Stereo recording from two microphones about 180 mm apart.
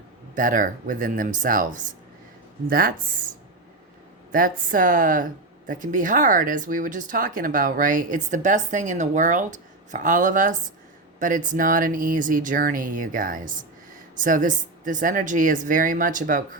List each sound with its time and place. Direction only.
0.3 s speech: 45° right (ahead or behind)
4.3 s speech: 50° right (ahead or behind)